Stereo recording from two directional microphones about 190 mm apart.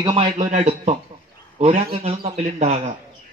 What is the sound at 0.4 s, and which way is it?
A man's voice, 35° right (ahead or behind).